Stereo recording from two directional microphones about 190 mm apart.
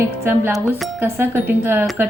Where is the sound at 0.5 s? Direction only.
Centre (ahead or behind).